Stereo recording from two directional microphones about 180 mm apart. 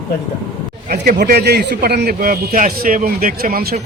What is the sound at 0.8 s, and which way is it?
A man's voice, 60° right (ahead or behind).